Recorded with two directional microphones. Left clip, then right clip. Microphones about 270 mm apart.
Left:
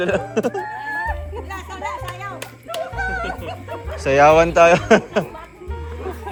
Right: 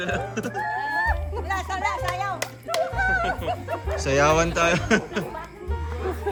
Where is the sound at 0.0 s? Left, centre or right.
Centre.